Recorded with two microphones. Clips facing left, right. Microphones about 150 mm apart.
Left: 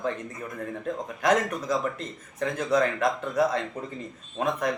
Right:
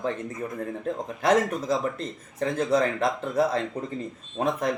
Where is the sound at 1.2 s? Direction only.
30° right (ahead or behind).